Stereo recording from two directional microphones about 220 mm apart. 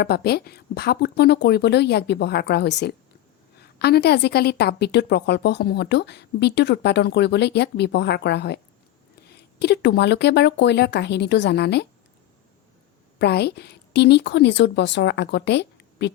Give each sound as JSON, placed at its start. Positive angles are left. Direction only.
{"t": 0.0, "sound": "a woman's voice", "side_deg": 45}
{"t": 13.1, "sound": "a woman's voice", "side_deg": 50}